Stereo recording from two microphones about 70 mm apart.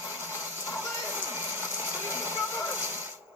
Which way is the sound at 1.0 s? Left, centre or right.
Right.